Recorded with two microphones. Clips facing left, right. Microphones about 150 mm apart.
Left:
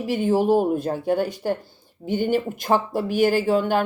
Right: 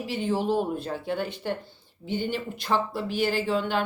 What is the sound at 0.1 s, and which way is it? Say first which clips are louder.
Speech: left 7 dB; 45° left (ahead or behind).